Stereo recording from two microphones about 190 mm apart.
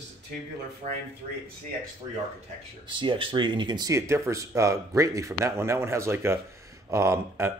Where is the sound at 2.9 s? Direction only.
25° right (ahead or behind).